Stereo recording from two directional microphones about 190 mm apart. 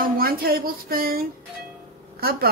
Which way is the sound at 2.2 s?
55° right (ahead or behind).